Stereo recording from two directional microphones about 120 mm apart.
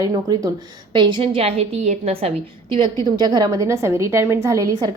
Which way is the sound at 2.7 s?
40° right (ahead or behind).